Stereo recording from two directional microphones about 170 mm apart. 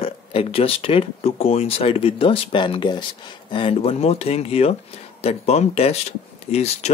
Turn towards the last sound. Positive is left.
turn(degrees=40)  # may be behind; listen again after turning